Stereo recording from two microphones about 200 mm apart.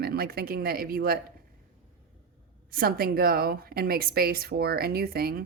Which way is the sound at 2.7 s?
50° right (ahead or behind).